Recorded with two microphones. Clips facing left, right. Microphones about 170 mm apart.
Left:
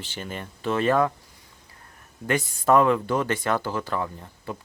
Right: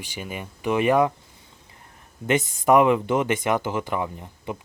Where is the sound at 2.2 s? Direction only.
20° right (ahead or behind).